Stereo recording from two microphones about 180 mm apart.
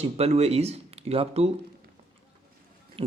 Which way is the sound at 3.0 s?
30° right (ahead or behind).